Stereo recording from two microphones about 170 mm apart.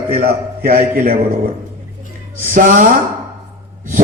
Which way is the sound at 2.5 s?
50° right (ahead or behind).